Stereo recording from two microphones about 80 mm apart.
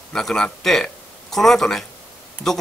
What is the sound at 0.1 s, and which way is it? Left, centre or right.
Speech, centre.